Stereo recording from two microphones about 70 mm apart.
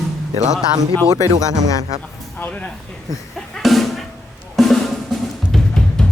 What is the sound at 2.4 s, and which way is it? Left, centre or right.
Speech, left.